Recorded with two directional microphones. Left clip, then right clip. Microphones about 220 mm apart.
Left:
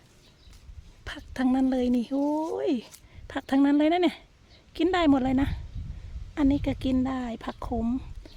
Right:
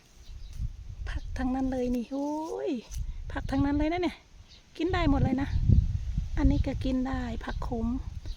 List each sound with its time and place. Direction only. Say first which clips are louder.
1.0 s a woman's voice: left 6 dB; 30° left (ahead or behind)